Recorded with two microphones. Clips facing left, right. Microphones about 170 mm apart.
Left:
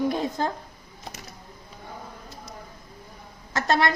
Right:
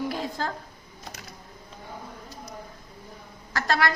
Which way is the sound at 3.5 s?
20° left (ahead or behind).